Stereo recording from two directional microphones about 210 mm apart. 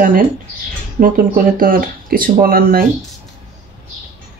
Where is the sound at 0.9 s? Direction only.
45° right (ahead or behind).